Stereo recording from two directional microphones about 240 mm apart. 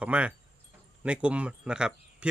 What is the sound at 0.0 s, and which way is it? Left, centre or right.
Speech, centre.